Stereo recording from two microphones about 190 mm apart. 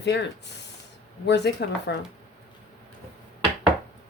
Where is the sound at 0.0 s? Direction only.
65° left (ahead or behind).